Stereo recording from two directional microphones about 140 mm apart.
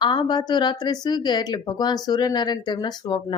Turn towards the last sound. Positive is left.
turn(degrees=30)  # may be behind; listen again after turning